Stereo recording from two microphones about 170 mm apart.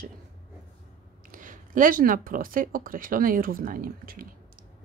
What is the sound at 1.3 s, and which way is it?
Speech, 55° right (ahead or behind).